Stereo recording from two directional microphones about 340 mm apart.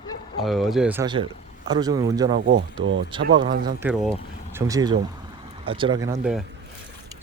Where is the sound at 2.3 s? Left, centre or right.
Right.